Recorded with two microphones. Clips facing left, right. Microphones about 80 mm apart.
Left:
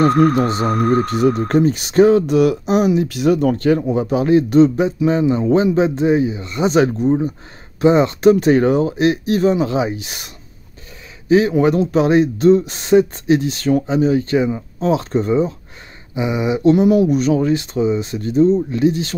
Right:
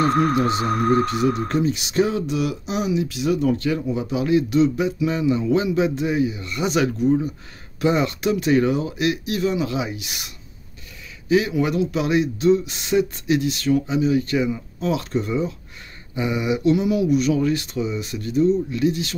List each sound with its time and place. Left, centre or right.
0.4 s speech: left
0.7 s speech: centre
1.0 s speech: left
16.2 s a sound: left
16.6 s speech: left